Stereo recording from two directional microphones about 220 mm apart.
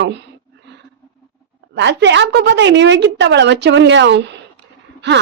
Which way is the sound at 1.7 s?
55° right (ahead or behind).